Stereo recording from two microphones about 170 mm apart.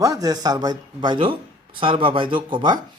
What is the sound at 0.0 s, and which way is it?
A man's voice, 20° right (ahead or behind).